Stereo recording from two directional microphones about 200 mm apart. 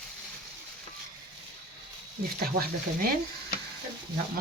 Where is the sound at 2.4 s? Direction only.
50° right (ahead or behind).